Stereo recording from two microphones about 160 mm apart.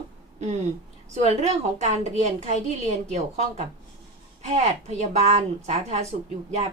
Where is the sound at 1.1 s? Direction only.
45° right (ahead or behind).